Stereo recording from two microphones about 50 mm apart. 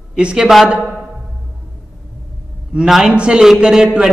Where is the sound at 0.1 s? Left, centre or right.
Centre.